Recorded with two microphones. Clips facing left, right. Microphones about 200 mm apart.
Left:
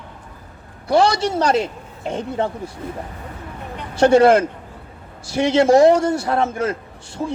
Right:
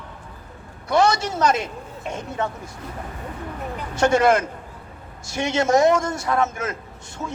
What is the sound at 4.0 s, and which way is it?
Speech, 30° left (ahead or behind).